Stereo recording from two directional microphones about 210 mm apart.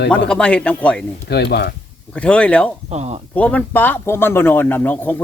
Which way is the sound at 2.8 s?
30° right (ahead or behind).